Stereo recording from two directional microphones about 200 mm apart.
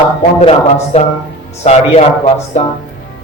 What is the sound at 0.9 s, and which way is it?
Speech, 30° left (ahead or behind).